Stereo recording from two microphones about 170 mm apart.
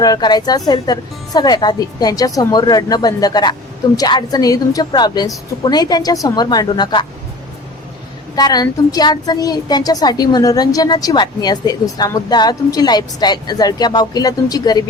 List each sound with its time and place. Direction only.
0.0 s a woman's voice: 25° left (ahead or behind)
8.4 s a woman's voice: 25° left (ahead or behind)